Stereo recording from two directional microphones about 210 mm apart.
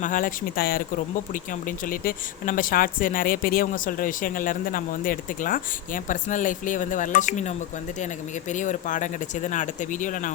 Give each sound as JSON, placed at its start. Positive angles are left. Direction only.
{"t": 0.0, "sound": "speech", "side_deg": 40}
{"t": 1.9, "sound": "speech", "side_deg": 40}